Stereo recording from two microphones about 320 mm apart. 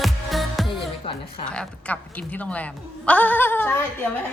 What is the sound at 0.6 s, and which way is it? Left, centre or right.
Music, centre.